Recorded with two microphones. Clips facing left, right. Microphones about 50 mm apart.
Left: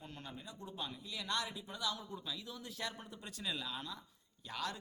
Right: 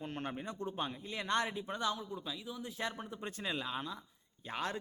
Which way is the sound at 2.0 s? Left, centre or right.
Centre.